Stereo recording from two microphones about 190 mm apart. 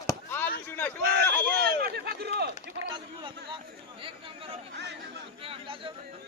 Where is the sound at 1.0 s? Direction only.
60° right (ahead or behind).